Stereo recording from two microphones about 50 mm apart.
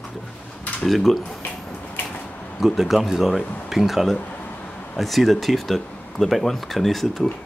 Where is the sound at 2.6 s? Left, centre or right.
Centre.